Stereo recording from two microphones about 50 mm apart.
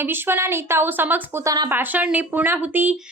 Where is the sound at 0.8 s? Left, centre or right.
Right.